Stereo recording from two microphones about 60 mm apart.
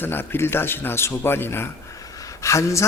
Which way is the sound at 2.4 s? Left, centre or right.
Left.